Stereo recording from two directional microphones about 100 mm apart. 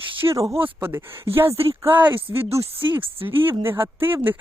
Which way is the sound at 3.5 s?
20° right (ahead or behind).